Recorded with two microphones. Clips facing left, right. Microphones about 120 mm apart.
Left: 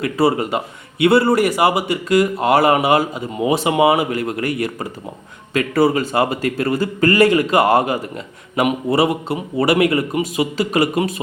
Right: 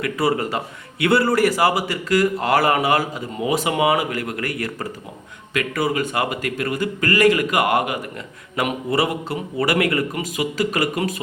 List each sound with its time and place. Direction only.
0.0 s a man's voice: 25° left (ahead or behind)
8.1 s a man's voice: 25° left (ahead or behind)